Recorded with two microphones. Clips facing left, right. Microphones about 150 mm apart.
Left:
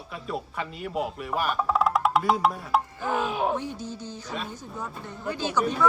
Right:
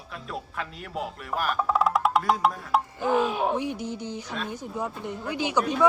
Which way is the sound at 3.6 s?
15° right (ahead or behind).